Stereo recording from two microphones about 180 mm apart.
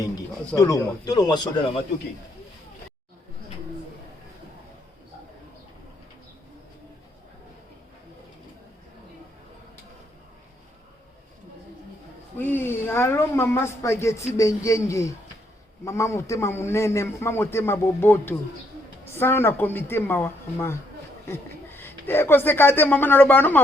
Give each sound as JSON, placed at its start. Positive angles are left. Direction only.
{"t": 0.5, "sound": "speech", "side_deg": 20}
{"t": 12.4, "sound": "a woman's voice", "side_deg": 10}